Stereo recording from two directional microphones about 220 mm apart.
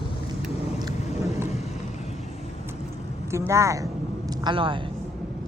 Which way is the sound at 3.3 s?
10° right (ahead or behind).